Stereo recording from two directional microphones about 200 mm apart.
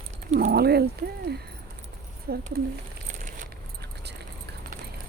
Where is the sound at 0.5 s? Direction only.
50° right (ahead or behind).